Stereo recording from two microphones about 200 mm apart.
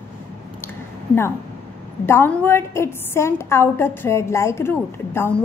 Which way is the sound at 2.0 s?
10° left (ahead or behind).